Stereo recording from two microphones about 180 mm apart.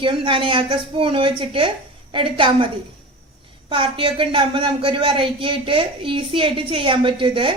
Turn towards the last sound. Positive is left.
turn(degrees=-30)  # may be behind; listen again after turning